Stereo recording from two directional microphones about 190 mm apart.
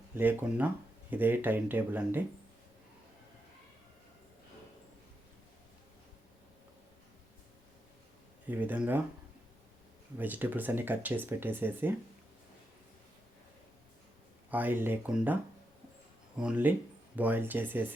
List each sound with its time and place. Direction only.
0.1 s speech: 10° right (ahead or behind)
8.4 s speech: 10° right (ahead or behind)
10.2 s speech: 10° right (ahead or behind)
14.5 s speech: 10° right (ahead or behind)
16.4 s speech: 5° right (ahead or behind)